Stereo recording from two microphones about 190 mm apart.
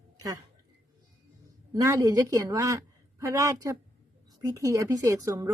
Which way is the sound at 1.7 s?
15° right (ahead or behind).